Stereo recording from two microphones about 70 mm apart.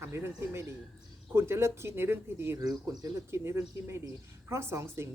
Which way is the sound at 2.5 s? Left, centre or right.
Right.